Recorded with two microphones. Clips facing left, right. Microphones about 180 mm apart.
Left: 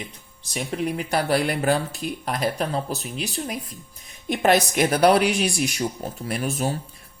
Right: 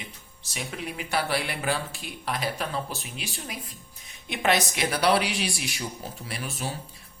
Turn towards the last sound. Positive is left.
turn(degrees=45)  # may be behind; listen again after turning